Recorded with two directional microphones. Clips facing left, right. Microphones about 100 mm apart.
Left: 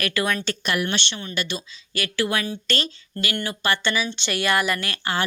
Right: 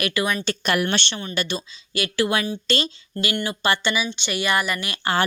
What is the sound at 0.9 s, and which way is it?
Speech, 35° right (ahead or behind).